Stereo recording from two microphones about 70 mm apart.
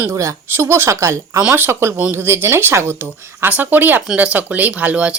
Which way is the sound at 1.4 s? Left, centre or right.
Right.